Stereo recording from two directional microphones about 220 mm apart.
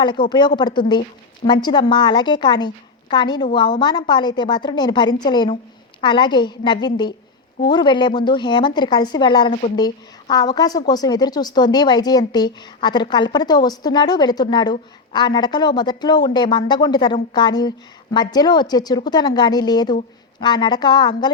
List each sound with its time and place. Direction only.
0.0 s a woman's voice: 20° left (ahead or behind)